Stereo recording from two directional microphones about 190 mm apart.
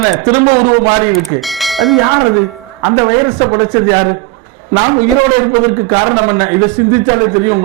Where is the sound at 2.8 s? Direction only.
25° right (ahead or behind).